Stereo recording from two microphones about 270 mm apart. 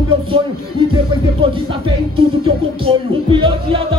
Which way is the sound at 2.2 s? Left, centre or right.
Centre.